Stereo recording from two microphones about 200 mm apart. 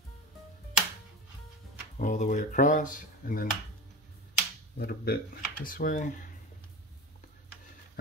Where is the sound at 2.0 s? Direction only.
40° left (ahead or behind).